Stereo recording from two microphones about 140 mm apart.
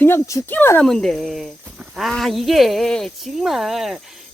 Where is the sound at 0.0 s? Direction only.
20° left (ahead or behind).